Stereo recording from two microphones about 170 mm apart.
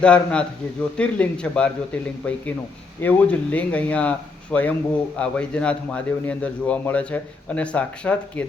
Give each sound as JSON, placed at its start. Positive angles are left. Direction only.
{"t": 0.0, "sound": "speech", "side_deg": 5}